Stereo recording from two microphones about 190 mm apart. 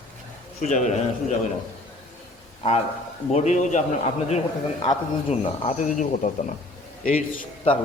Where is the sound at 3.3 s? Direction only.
35° left (ahead or behind).